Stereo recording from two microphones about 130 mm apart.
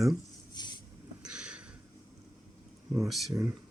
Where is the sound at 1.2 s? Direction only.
5° right (ahead or behind).